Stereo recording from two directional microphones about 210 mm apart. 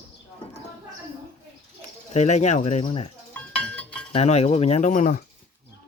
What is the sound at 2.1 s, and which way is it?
Speech, 35° left (ahead or behind).